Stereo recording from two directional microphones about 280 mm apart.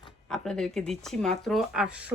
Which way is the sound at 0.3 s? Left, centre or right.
Centre.